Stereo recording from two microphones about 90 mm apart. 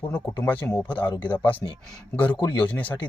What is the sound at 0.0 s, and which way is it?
Speech, 20° left (ahead or behind).